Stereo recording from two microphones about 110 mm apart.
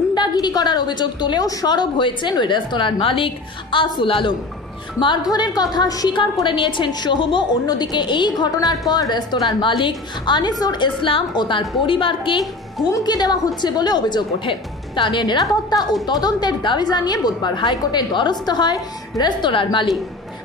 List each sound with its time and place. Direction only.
0.1 s a woman's voice: 40° left (ahead or behind)
6.4 s a woman's voice: 45° left (ahead or behind)
9.6 s a woman's voice: 50° left (ahead or behind)
12.9 s a woman's voice: 40° left (ahead or behind)